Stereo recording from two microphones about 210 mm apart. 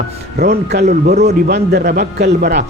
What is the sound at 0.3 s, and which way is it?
Speech, 50° right (ahead or behind).